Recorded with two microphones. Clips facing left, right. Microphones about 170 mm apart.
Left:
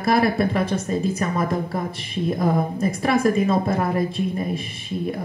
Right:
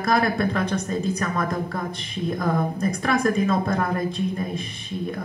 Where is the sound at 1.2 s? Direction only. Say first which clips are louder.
Left 2 dB; 25° left (ahead or behind).